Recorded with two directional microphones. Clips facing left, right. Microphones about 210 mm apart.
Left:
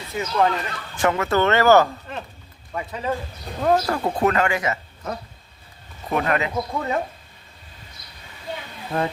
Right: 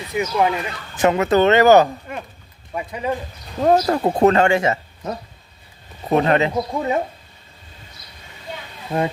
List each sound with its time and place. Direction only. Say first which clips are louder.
0.1 s speech: right 2 dB; 15° right (ahead or behind)
3.6 s speech: right 4 dB; 25° right (ahead or behind)
6.1 s speech: right 6 dB; 25° right (ahead or behind)
8.9 s speech: right 3 dB; 20° right (ahead or behind)